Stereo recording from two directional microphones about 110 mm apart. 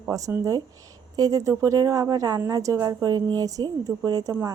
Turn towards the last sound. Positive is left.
turn(degrees=-35)  # may be behind; listen again after turning